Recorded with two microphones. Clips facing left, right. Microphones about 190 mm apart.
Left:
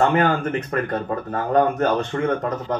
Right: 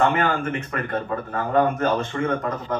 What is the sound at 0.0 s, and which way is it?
Speech, 40° left (ahead or behind).